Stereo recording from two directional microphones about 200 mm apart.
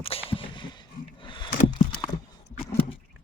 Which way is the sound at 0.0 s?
30° left (ahead or behind).